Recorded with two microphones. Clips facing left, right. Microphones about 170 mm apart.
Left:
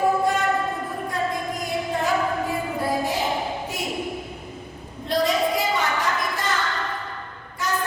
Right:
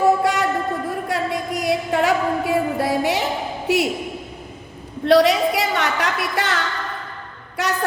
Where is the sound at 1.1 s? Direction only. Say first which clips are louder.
Right 3 dB; 75° right (ahead or behind).